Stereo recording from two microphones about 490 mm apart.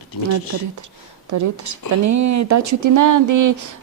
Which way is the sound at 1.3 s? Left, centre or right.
Right.